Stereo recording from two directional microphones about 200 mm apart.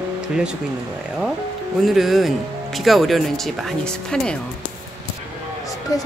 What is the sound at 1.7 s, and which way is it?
Speech, centre (ahead or behind).